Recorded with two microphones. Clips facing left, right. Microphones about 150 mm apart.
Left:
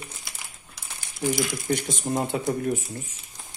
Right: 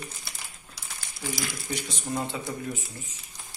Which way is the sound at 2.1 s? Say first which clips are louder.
Left 6 dB; 50° left (ahead or behind).